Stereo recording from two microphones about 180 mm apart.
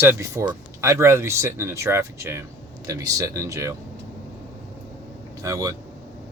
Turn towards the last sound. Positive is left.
turn(degrees=-15)  # may be behind; listen again after turning